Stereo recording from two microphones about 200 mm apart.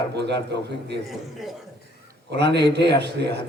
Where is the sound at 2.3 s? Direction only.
55° right (ahead or behind).